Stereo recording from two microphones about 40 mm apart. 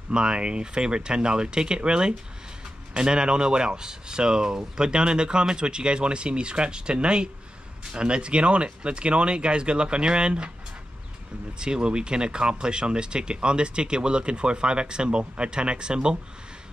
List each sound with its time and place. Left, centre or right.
0.1 s speech: right
11.6 s speech: right